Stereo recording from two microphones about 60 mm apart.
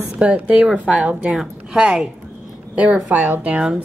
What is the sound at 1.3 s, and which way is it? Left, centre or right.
A woman's voice, centre.